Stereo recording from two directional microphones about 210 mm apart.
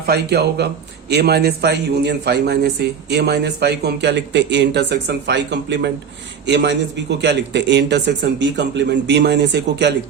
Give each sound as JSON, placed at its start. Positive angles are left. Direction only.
{"t": 0.1, "sound": "a man's voice", "side_deg": -50}